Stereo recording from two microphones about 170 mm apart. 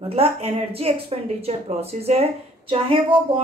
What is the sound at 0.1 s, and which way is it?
Speech, 35° right (ahead or behind).